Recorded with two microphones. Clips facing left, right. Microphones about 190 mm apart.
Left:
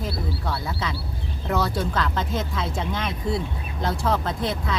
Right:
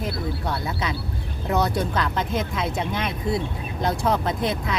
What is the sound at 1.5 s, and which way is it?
Speech, 20° right (ahead or behind).